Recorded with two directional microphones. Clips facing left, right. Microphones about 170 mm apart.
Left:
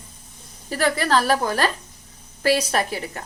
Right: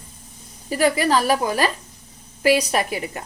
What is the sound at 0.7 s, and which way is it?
Speech, 10° right (ahead or behind).